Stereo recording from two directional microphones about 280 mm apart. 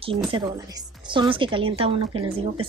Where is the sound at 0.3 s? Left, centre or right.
Centre.